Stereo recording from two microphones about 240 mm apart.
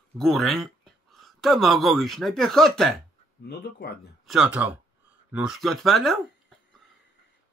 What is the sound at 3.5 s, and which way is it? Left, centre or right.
Speech, left.